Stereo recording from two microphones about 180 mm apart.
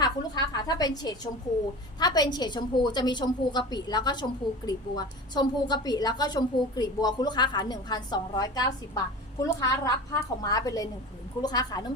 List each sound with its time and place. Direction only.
0.0 s a woman's voice: 20° left (ahead or behind)